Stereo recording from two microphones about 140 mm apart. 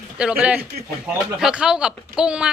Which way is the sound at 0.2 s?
10° right (ahead or behind).